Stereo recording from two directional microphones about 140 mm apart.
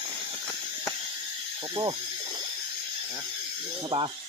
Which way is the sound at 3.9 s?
45° right (ahead or behind).